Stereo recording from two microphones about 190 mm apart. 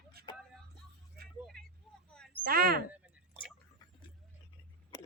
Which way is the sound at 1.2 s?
55° right (ahead or behind).